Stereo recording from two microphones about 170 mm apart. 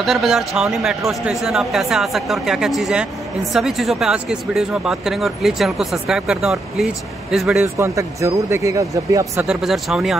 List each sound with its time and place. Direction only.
0.0 s speech: centre (ahead or behind)
7.6 s speech: 15° right (ahead or behind)
9.5 s speech: centre (ahead or behind)